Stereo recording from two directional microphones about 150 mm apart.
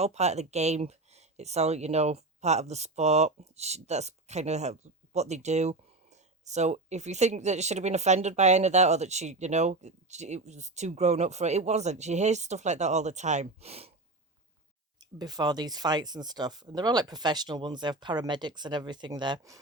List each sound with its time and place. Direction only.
0.0 s speech: 45° right (ahead or behind)
15.2 s speech: 25° right (ahead or behind)